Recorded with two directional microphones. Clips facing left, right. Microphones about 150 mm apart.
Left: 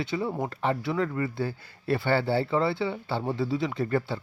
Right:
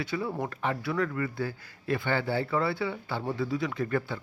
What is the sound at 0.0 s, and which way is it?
Speech, 25° left (ahead or behind).